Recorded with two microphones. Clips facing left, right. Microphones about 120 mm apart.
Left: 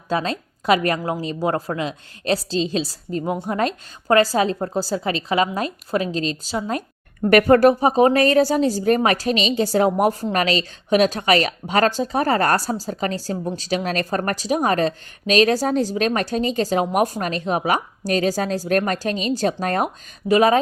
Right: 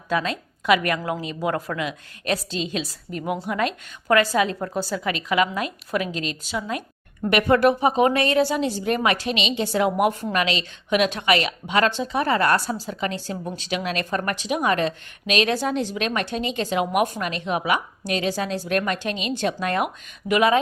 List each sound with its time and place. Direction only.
0.1 s a woman's voice: 35° left (ahead or behind)